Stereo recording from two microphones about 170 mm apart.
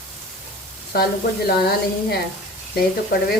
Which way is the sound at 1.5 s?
65° left (ahead or behind).